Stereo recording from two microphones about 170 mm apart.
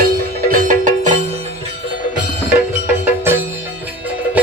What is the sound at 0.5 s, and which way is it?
Music, 50° right (ahead or behind).